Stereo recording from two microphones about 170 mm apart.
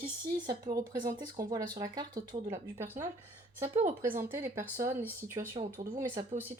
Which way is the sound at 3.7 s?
35° right (ahead or behind).